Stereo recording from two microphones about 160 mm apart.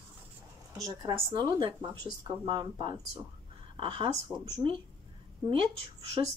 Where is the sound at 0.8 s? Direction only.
25° right (ahead or behind).